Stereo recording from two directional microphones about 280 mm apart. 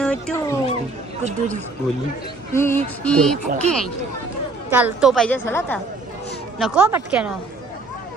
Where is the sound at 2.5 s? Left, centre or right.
Centre.